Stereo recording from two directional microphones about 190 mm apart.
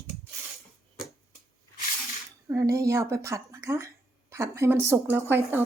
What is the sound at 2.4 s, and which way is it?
Speech, 15° right (ahead or behind).